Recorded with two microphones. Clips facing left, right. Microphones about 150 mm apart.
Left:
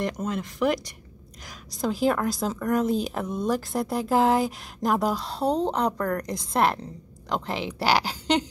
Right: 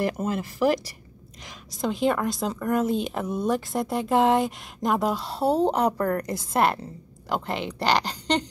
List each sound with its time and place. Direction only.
0.0 s a woman's voice: 5° right (ahead or behind)